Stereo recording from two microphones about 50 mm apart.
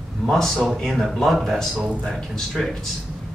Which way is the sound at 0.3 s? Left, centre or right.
Centre.